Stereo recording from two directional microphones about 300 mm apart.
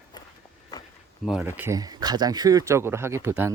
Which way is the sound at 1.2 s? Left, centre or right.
Centre.